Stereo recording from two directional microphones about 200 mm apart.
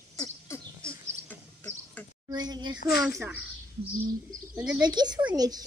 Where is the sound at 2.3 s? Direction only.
20° right (ahead or behind).